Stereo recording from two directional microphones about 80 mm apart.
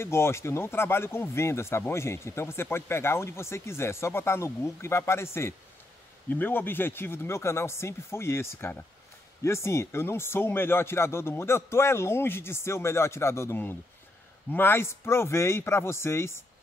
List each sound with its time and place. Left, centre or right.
0.0 s speech: left